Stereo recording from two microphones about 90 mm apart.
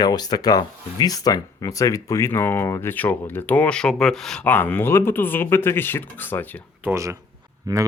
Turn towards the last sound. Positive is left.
turn(degrees=-40)  # may be behind; listen again after turning